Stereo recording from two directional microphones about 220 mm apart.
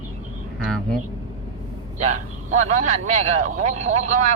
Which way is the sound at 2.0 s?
35° right (ahead or behind).